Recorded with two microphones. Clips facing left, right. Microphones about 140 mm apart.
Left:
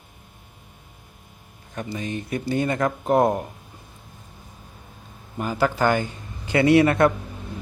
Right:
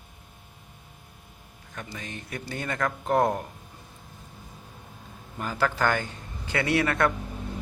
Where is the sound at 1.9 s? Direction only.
20° left (ahead or behind).